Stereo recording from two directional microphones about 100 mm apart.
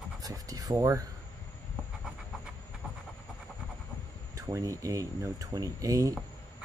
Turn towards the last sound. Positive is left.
turn(degrees=-35)  # may be behind; listen again after turning